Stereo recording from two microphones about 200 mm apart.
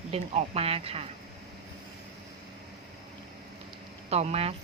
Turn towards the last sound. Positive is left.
turn(degrees=-30)  # may be behind; listen again after turning